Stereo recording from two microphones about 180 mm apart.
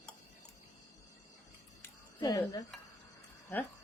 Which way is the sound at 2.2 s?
25° left (ahead or behind).